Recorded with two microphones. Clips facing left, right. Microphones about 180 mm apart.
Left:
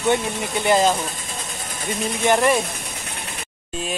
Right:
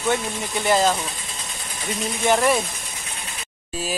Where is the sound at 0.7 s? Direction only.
15° left (ahead or behind).